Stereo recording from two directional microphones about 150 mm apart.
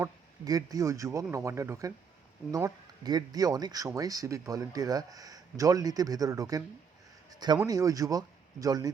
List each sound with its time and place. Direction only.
0.4 s speech: 25° right (ahead or behind)